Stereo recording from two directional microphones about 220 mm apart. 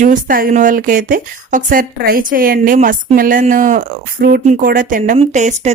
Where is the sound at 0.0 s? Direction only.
40° right (ahead or behind).